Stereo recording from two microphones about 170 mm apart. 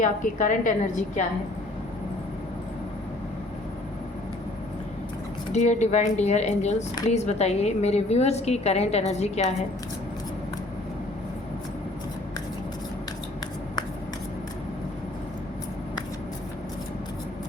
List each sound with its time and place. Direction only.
0.0 s speech: 50° left (ahead or behind)
5.5 s a woman's voice: 40° left (ahead or behind)